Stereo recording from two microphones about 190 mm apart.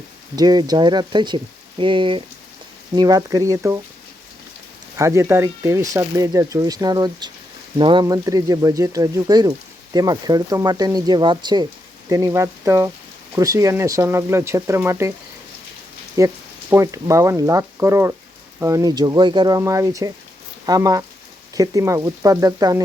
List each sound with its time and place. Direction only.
0.3 s speech: 20° right (ahead or behind)
4.9 s speech: 15° right (ahead or behind)
16.1 s speech: 15° right (ahead or behind)